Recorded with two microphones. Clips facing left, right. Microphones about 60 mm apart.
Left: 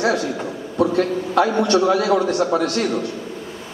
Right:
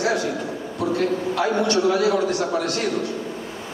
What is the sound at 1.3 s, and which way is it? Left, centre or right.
A man's voice, left.